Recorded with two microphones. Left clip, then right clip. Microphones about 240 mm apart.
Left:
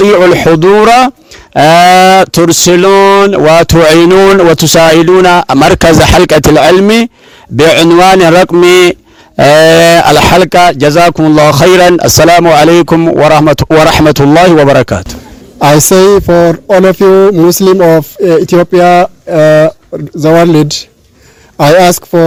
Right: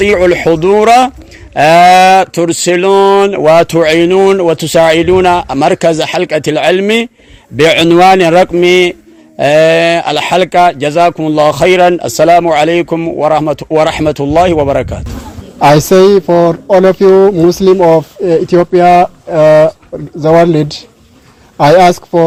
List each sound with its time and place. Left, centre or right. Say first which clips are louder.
0.0 s a man's voice: left 4 dB; left